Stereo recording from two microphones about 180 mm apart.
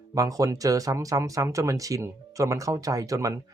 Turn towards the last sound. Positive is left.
turn(degrees=-15)  # may be behind; listen again after turning